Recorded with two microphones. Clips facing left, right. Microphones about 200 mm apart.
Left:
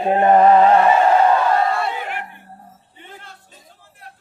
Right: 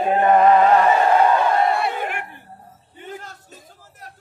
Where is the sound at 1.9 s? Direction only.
50° right (ahead or behind).